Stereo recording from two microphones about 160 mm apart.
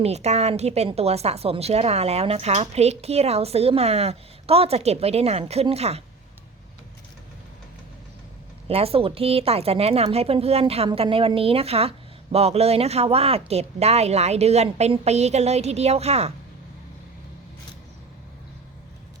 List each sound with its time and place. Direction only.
0.0 s a woman's voice: 45° right (ahead or behind)
8.6 s a woman's voice: 35° right (ahead or behind)